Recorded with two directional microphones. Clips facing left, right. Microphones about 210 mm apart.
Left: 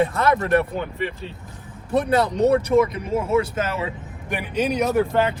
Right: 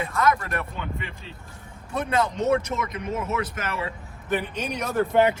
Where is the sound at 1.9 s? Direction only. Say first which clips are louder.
Left 5 dB; 35° left (ahead or behind).